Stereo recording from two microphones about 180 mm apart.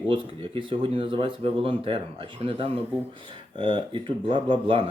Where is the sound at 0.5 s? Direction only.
30° right (ahead or behind).